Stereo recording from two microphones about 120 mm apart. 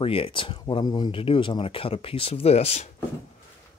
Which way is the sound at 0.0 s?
50° left (ahead or behind).